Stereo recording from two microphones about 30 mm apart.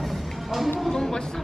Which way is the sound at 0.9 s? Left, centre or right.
Centre.